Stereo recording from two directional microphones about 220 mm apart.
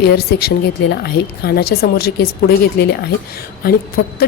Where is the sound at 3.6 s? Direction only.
40° left (ahead or behind).